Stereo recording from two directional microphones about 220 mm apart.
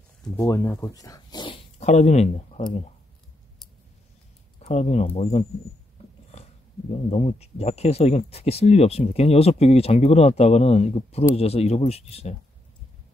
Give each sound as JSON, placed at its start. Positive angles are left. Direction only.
{"t": 0.4, "sound": "speech", "side_deg": 15}
{"t": 4.6, "sound": "speech", "side_deg": 30}
{"t": 6.0, "sound": "dog", "side_deg": 25}
{"t": 7.1, "sound": "speech", "side_deg": 30}